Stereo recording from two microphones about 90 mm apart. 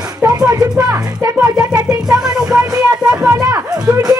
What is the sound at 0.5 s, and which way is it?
Speech, 40° right (ahead or behind).